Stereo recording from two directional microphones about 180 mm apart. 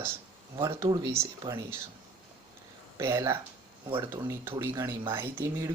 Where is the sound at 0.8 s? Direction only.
20° right (ahead or behind).